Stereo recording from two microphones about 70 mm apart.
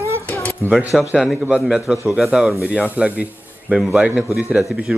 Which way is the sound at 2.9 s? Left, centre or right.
Centre.